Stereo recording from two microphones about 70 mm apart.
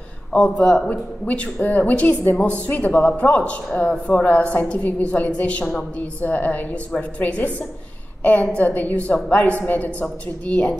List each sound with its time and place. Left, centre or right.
0.3 s a woman's voice: centre